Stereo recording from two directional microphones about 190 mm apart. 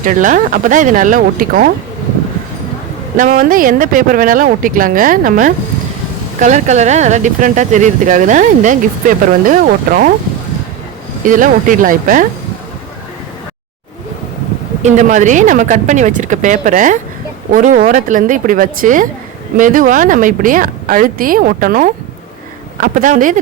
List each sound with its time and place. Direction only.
0.0 s speech: 45° right (ahead or behind)
3.2 s speech: 45° right (ahead or behind)
11.2 s speech: 45° right (ahead or behind)
14.8 s speech: 40° right (ahead or behind)